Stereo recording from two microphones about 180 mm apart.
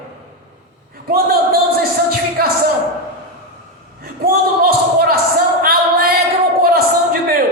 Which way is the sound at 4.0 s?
55° right (ahead or behind).